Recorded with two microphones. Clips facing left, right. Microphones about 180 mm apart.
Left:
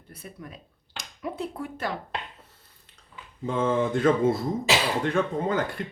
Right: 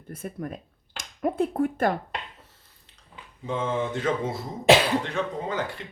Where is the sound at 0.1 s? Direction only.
50° right (ahead or behind).